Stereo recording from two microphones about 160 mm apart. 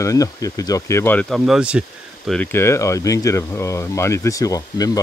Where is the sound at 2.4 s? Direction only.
15° left (ahead or behind).